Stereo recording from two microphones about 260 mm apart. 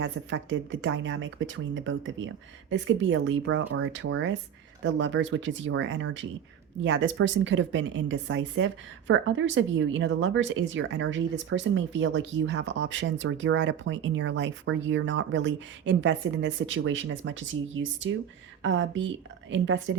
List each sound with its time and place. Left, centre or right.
0.0 s speech: right